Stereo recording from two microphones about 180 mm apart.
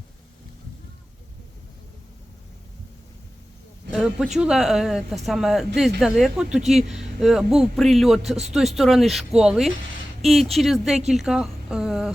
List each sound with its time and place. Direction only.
3.9 s speech: centre (ahead or behind)